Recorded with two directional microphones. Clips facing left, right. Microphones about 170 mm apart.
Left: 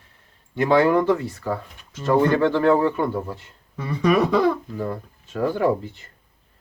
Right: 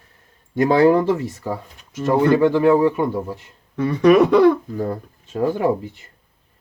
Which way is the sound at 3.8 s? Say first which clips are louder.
Right 6 dB; 70° right (ahead or behind).